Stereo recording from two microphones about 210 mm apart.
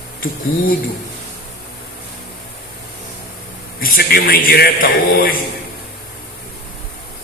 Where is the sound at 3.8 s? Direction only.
45° left (ahead or behind).